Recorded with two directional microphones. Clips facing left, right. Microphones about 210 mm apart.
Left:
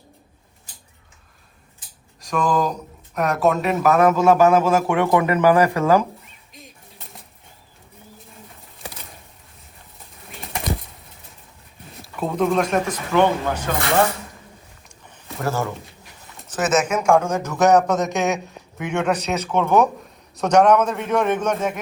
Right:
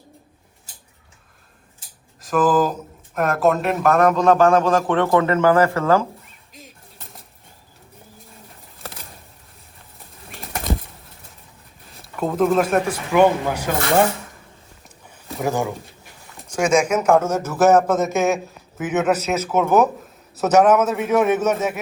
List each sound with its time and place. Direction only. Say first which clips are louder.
2.2 s speech: right 3 dB; 5° right (ahead or behind); by 6.1 s 15° left (ahead or behind)
8.8 s a sound: even; centre (ahead or behind)
10.4 s bird flight: even; centre (ahead or behind)
12.0 s speech: right 2 dB; centre (ahead or behind)
14.8 s a sound: right 4 dB; 5° right (ahead or behind)
15.4 s a man's voice: right 2 dB; 15° right (ahead or behind)